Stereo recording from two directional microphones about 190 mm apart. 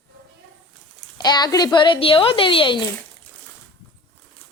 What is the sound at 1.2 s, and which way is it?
Speech, 20° left (ahead or behind).